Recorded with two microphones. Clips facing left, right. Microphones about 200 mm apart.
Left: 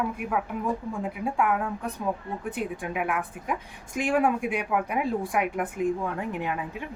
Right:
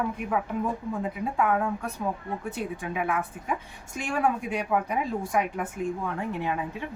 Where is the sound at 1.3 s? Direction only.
10° left (ahead or behind).